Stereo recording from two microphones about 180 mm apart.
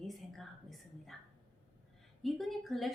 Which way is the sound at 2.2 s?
Centre (ahead or behind).